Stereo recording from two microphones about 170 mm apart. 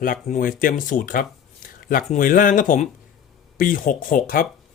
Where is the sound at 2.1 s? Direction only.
55° left (ahead or behind).